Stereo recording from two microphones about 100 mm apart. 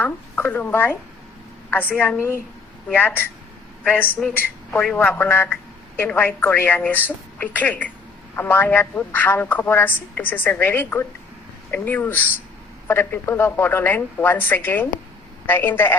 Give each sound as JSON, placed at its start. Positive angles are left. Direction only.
{"t": 0.0, "sound": "a woman's voice", "side_deg": 20}
{"t": 4.4, "sound": "a man's voice", "side_deg": 15}